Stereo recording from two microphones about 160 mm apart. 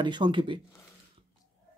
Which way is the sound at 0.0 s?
30° right (ahead or behind).